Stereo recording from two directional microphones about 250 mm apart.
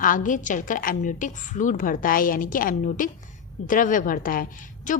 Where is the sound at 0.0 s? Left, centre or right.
Left.